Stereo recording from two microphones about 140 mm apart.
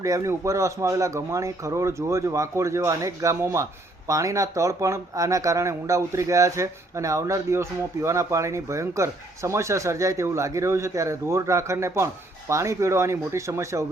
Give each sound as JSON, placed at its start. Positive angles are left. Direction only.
{"t": 0.0, "sound": "speech", "side_deg": -20}